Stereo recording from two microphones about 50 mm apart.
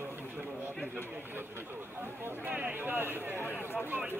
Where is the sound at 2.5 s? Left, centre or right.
Right.